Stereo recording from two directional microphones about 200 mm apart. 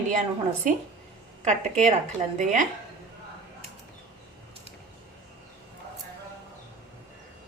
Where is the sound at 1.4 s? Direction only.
40° right (ahead or behind).